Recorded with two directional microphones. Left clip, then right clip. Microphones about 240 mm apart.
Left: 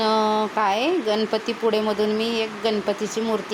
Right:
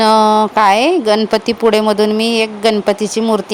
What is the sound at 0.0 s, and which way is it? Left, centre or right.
Speech, right.